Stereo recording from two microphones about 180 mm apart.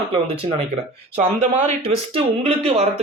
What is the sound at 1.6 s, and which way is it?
Speech, 30° right (ahead or behind).